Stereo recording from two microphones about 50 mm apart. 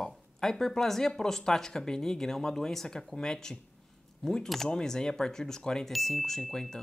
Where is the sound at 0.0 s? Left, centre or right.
Centre.